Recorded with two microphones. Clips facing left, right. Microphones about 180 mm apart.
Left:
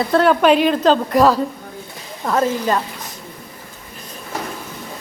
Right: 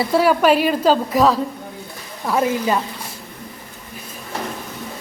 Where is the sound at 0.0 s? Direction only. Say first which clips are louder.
Left 1 dB; 5° right (ahead or behind).